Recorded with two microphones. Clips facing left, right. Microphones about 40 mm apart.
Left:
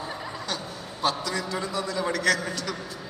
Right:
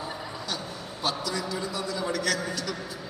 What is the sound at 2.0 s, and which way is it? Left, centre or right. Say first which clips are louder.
Speech: left 1 dB; left.